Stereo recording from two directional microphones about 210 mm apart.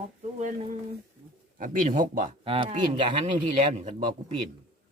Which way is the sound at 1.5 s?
40° right (ahead or behind).